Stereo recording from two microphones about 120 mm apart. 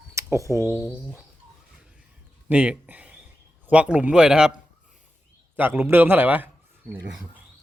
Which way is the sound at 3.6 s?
10° right (ahead or behind).